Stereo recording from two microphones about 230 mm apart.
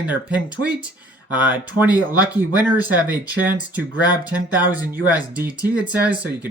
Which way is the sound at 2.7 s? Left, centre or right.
Centre.